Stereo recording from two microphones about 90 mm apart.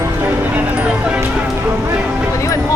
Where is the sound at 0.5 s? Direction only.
15° right (ahead or behind).